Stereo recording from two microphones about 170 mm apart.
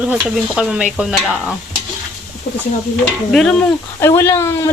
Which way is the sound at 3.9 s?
15° left (ahead or behind).